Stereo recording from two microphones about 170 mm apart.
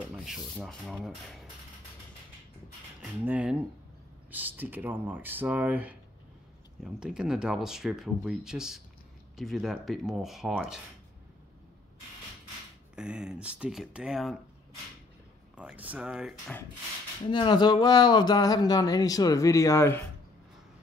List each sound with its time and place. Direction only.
0.1 s rub: 5° right (ahead or behind)
3.0 s speech: 5° right (ahead or behind)
12.9 s speech: 5° right (ahead or behind)
15.5 s speech: 10° right (ahead or behind)
17.3 s speech: 25° left (ahead or behind)